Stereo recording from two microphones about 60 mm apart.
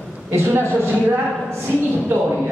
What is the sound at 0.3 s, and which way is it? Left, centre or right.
Speech, right.